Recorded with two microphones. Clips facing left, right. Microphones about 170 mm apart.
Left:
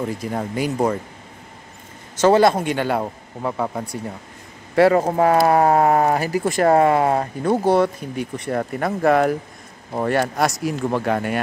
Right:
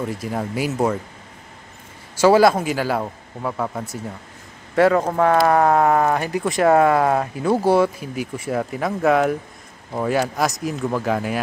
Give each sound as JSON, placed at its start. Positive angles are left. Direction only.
{"t": 0.0, "sound": "speech", "side_deg": 0}
{"t": 2.1, "sound": "speech", "side_deg": -5}
{"t": 5.5, "sound": "a sound", "side_deg": 30}
{"t": 6.1, "sound": "speech", "side_deg": 5}